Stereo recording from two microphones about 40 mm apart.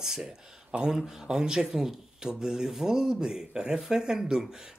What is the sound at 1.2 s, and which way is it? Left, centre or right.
Speech, centre.